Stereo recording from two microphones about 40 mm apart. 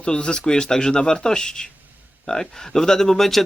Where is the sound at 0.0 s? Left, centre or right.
Left.